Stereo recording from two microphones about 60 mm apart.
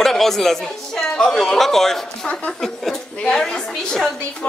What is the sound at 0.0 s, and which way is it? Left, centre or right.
Speech, centre.